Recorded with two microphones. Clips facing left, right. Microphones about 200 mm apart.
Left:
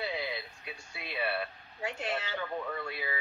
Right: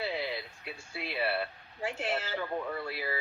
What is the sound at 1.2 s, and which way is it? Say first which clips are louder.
Speech: right 2 dB; 30° right (ahead or behind).